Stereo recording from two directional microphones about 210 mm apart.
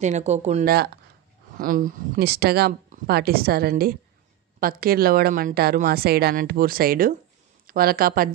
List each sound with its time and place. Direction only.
0.0 s speech: 35° right (ahead or behind)
0.7 s speech: 50° right (ahead or behind)